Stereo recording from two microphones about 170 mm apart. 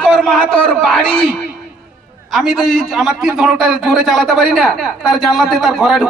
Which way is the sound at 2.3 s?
Centre (ahead or behind).